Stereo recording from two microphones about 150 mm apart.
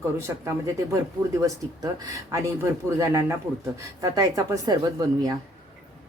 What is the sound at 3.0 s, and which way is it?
A woman's voice, 20° right (ahead or behind).